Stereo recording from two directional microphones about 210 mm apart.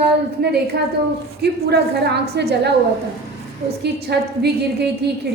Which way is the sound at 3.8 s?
50° right (ahead or behind).